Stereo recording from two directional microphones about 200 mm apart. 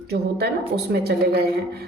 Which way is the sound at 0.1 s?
55° right (ahead or behind).